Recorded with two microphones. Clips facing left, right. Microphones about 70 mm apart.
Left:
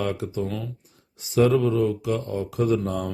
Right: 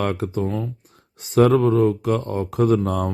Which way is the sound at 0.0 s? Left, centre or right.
Right.